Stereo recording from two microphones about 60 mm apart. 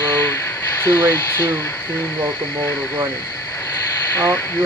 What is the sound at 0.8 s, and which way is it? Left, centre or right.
Speech, left.